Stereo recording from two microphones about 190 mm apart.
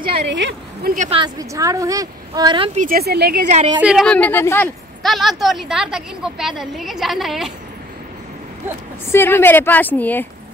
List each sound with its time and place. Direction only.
0.2 s a woman's voice: 70° right (ahead or behind)
0.9 s a woman's voice: 40° right (ahead or behind)
1.2 s speech: 15° right (ahead or behind)
2.7 s a woman's voice: 45° right (ahead or behind)
3.8 s a woman's voice: centre (ahead or behind)
5.0 s a woman's voice: centre (ahead or behind)
9.1 s a woman's voice: 10° left (ahead or behind)